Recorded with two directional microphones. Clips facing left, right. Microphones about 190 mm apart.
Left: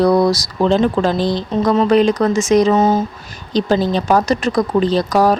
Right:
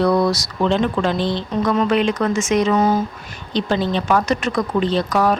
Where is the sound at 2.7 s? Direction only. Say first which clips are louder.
Left 3 dB; 25° left (ahead or behind).